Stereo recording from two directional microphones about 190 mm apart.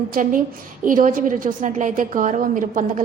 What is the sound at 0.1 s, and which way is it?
A woman's voice, 45° right (ahead or behind).